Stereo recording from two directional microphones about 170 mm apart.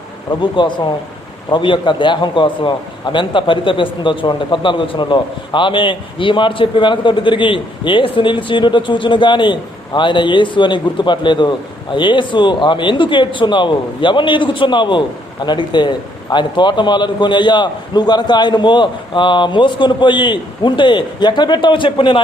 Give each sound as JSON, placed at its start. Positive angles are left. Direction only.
{"t": 0.3, "sound": "a man's voice", "side_deg": 25}